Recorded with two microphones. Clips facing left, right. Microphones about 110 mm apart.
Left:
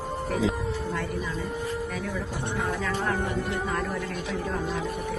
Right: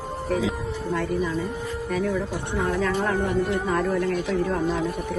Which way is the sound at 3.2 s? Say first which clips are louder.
Right 6 dB; 15° right (ahead or behind).